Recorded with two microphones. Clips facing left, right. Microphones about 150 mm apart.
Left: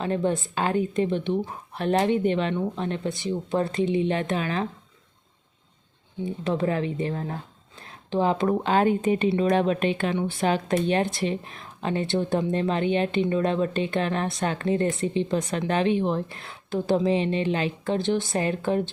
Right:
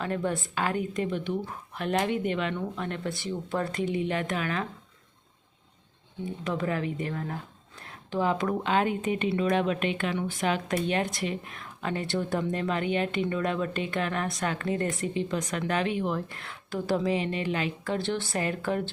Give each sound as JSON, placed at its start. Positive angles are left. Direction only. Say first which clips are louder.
{"t": 0.0, "sound": "speech", "louder": "left 5 dB", "side_deg": 25}
{"t": 6.4, "sound": "speech", "louder": "left 4 dB", "side_deg": 30}